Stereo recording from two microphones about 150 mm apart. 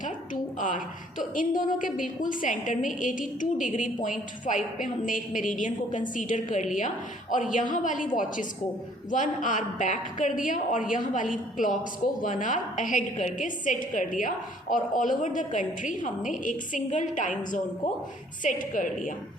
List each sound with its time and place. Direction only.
1.4 s a woman's voice: 60° left (ahead or behind)